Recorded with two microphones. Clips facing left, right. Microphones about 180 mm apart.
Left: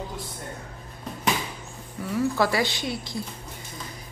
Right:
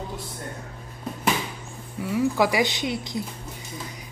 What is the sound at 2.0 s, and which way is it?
Speech, 10° right (ahead or behind).